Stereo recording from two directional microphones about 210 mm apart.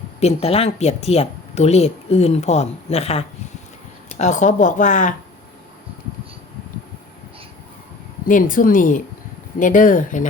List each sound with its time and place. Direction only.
0.2 s speech: 30° left (ahead or behind)
8.3 s speech: 40° left (ahead or behind)